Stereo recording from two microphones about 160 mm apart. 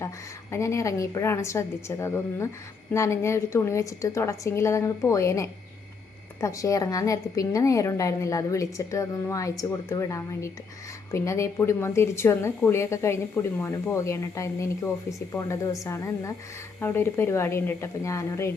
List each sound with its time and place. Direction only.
0.5 s a woman's voice: 15° left (ahead or behind)